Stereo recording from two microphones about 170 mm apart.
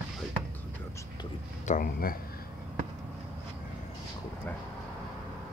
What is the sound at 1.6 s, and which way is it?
Speech, 50° left (ahead or behind).